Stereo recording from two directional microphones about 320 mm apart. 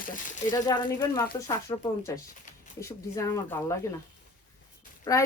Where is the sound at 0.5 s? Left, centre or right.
Centre.